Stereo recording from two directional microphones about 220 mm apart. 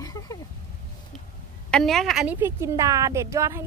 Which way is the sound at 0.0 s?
15° left (ahead or behind).